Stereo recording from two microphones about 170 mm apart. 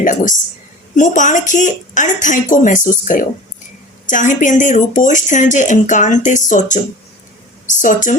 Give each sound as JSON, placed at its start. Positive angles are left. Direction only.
{"t": 0.0, "sound": "speech", "side_deg": 50}